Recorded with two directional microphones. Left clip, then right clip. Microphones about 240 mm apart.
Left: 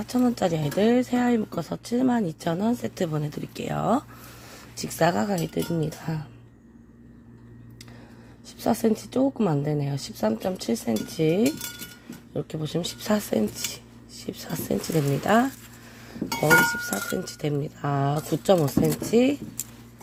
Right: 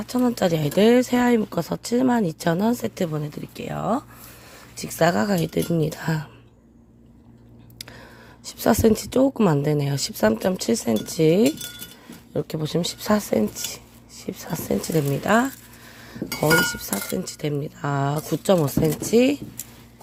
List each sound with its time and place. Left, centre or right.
0.0 s speech: centre
8.4 s speech: right